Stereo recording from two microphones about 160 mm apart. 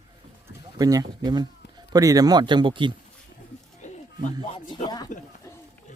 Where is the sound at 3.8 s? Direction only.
50° left (ahead or behind).